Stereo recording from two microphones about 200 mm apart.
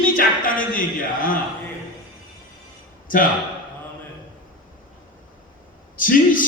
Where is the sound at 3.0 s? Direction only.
45° left (ahead or behind).